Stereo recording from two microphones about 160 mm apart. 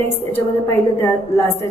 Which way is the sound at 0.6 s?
15° left (ahead or behind).